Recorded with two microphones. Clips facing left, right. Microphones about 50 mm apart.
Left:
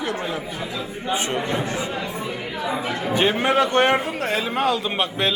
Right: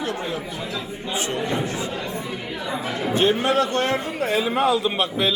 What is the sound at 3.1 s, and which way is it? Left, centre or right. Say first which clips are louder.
Speech: even; left.